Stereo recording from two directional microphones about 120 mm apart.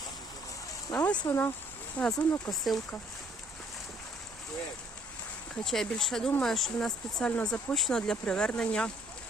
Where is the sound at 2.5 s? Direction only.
Centre (ahead or behind).